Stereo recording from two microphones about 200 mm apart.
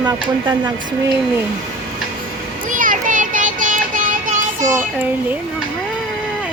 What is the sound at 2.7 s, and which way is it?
Child singing, 40° right (ahead or behind).